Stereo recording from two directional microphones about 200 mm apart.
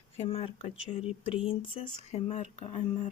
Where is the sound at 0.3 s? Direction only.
30° left (ahead or behind).